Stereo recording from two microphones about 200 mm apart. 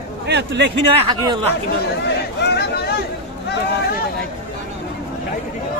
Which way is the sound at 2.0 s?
55° left (ahead or behind).